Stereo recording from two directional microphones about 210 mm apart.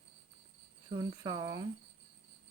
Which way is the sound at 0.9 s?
20° right (ahead or behind).